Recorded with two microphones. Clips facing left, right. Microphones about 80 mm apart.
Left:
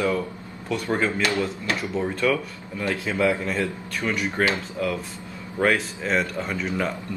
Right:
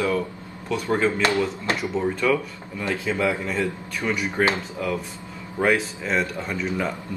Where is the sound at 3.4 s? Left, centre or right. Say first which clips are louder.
Even; centre.